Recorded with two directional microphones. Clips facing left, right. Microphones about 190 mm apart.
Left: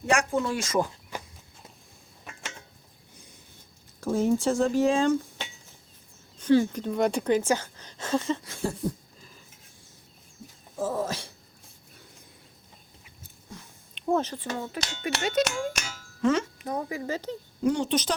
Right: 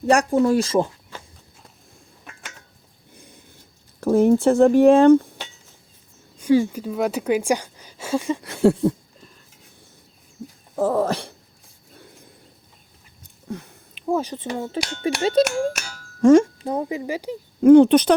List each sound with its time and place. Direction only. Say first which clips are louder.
0.0 s speech: right 8 dB; 35° right (ahead or behind)
1.1 s walk: left 2 dB; 15° left (ahead or behind)
4.0 s speech: right 8 dB; 60° right (ahead or behind)
6.4 s speech: right 3 dB; 10° right (ahead or behind)
8.4 s a sound: right 13 dB; 70° right (ahead or behind)
10.8 s speech: right 9 dB; 65° right (ahead or behind)
13.9 s a sound: right 3 dB; 10° right (ahead or behind)
14.3 s speech: right 5 dB; 20° right (ahead or behind)
15.2 s speech: right 8 dB; 30° right (ahead or behind)
16.2 s speech: right 12 dB; 45° right (ahead or behind)
16.6 s speech: right 6 dB; 25° right (ahead or behind)
17.6 s speech: right 15 dB; 55° right (ahead or behind)